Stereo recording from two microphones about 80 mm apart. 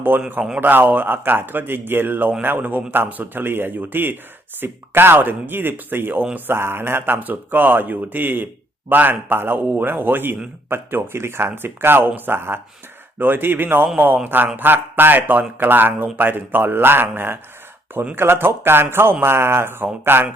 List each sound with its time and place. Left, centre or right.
0.1 s speech: right